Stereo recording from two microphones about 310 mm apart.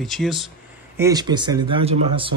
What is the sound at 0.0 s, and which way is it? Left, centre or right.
Speech, centre.